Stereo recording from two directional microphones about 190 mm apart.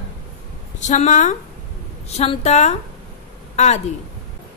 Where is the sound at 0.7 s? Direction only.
40° left (ahead or behind).